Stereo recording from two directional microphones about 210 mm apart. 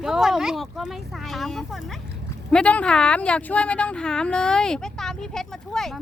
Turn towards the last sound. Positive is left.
turn(degrees=0)  # may be behind; listen again after turning